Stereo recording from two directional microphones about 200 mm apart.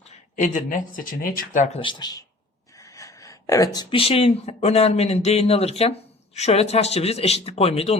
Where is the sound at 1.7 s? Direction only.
25° left (ahead or behind).